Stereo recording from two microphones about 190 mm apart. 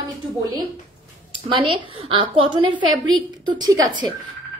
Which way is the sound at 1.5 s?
25° right (ahead or behind).